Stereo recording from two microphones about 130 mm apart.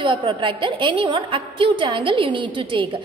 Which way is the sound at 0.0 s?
40° right (ahead or behind).